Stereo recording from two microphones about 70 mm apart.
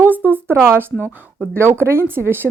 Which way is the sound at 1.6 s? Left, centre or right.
Right.